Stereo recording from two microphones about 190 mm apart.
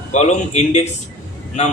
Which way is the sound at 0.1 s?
35° left (ahead or behind).